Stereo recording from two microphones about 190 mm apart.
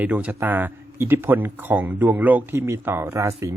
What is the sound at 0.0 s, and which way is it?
Speech, 10° right (ahead or behind).